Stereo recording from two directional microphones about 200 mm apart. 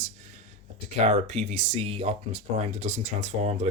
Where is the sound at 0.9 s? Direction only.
30° right (ahead or behind).